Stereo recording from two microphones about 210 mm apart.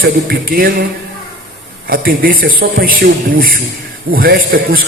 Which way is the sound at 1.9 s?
45° right (ahead or behind).